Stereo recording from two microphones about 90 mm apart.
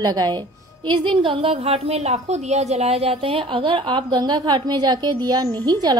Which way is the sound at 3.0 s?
90° right.